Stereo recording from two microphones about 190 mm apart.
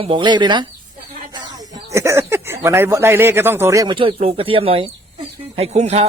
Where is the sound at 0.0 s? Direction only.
25° right (ahead or behind).